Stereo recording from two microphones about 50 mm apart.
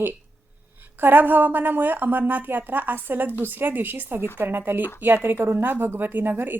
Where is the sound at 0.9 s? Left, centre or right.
Right.